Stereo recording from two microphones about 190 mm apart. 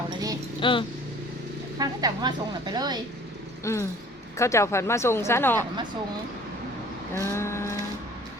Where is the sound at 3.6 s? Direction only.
15° left (ahead or behind).